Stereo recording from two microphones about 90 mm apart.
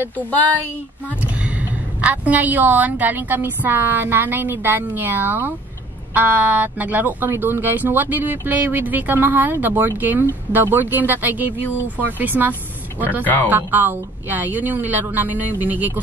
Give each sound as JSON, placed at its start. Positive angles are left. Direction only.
{"t": 0.1, "sound": "speech", "side_deg": 20}
{"t": 1.0, "sound": "a woman's voice", "side_deg": -15}